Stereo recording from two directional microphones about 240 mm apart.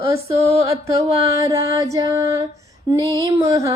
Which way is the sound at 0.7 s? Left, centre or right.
Right.